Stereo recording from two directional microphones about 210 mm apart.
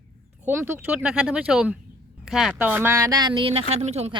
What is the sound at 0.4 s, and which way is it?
Speech, 10° right (ahead or behind).